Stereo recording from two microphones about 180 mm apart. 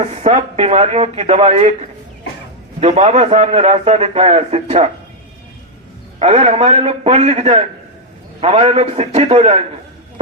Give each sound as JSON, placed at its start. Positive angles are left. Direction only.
{"t": 0.0, "sound": "a man's voice", "side_deg": -40}
{"t": 6.1, "sound": "a man's voice", "side_deg": -35}